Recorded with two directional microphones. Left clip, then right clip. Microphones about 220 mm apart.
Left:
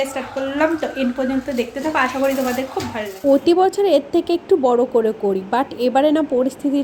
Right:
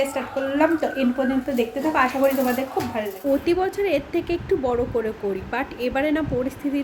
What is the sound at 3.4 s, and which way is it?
A woman's voice, 20° left (ahead or behind).